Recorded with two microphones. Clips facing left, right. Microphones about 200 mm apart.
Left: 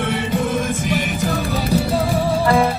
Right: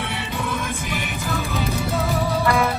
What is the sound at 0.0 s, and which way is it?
Music, 50° left (ahead or behind).